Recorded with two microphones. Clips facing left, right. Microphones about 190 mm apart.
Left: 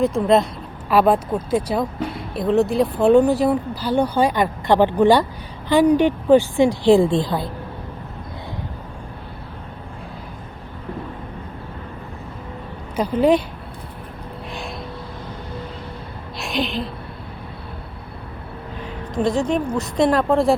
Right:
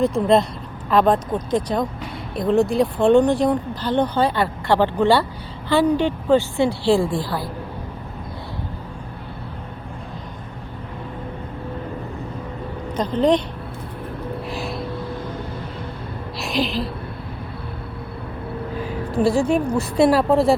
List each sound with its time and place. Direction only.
0.0 s speech: centre (ahead or behind); by 7.5 s 20° left (ahead or behind)
13.0 s speech: 10° left (ahead or behind)
14.5 s vehicle: centre (ahead or behind)
16.4 s a woman's voice: centre (ahead or behind)
19.1 s a woman's voice: 10° right (ahead or behind)